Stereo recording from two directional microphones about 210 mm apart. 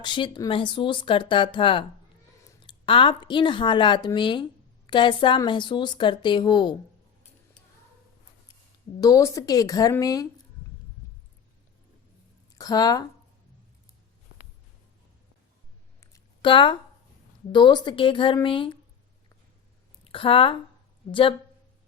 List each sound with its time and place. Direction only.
0.0 s a woman's voice: 20° left (ahead or behind)
9.0 s a woman's voice: 15° left (ahead or behind)
12.5 s speech: 20° left (ahead or behind)
16.0 s a sound: 20° left (ahead or behind)
17.5 s a woman's voice: 20° left (ahead or behind)
20.1 s a woman's voice: 25° left (ahead or behind)